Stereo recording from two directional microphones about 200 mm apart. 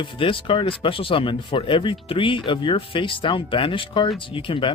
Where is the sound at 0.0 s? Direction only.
25° left (ahead or behind).